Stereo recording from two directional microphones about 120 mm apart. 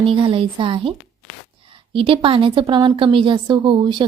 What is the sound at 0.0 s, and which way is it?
A woman's voice, 45° right (ahead or behind).